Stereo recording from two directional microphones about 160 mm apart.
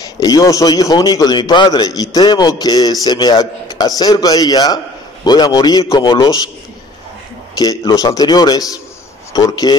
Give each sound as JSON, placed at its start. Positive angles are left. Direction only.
{"t": 0.0, "sound": "a man's voice", "side_deg": 20}
{"t": 7.5, "sound": "a man's voice", "side_deg": 25}